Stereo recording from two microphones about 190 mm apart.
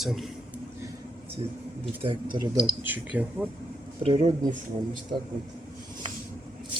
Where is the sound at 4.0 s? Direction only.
30° right (ahead or behind).